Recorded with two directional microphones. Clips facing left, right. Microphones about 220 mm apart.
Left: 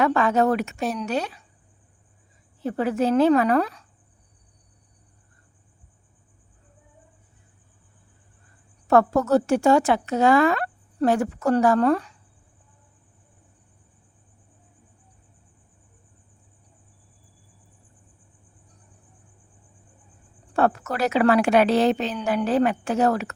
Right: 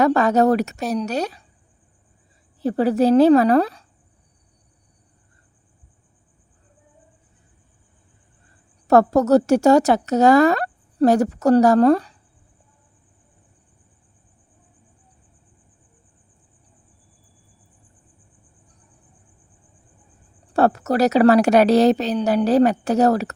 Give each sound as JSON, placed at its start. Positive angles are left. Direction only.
{"t": 0.0, "sound": "speech", "side_deg": -40}
{"t": 2.6, "sound": "speech", "side_deg": -35}
{"t": 8.9, "sound": "speech", "side_deg": -40}
{"t": 20.5, "sound": "speech", "side_deg": -35}